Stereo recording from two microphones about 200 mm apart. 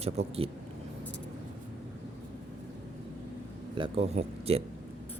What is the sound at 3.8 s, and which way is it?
Speech, 30° right (ahead or behind).